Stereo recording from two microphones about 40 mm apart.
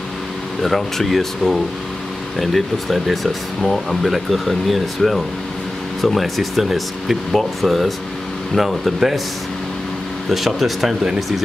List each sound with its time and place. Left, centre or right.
0.6 s speech: centre
10.3 s speech: centre